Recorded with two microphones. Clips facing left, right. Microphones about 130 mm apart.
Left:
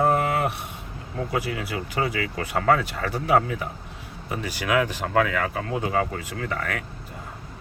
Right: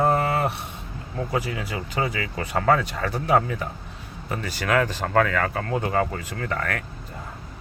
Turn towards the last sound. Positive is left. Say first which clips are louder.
# right 1 dB
turn(degrees=5)  # may be behind; listen again after turning